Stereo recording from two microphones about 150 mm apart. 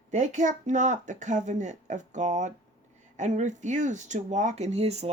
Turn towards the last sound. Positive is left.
turn(degrees=-45)  # may be behind; listen again after turning